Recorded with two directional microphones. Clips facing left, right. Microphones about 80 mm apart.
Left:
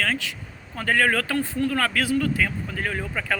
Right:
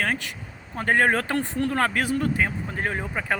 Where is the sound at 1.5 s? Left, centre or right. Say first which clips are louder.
Right 1 dB; right.